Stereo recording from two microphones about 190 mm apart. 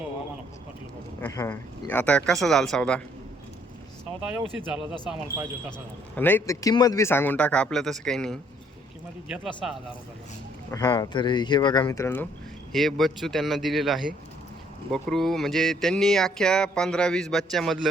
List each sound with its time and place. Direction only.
1.2 s speech: 15° left (ahead or behind)
4.7 s speech: 5° right (ahead or behind)
6.1 s speech: 10° left (ahead or behind)
10.7 s speech: 15° left (ahead or behind)